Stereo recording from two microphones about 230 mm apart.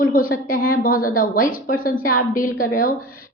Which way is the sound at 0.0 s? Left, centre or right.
Left.